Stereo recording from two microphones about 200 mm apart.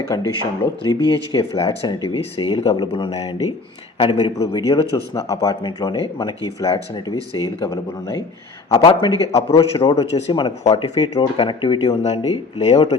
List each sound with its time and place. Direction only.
0.1 s a man's voice: 20° left (ahead or behind)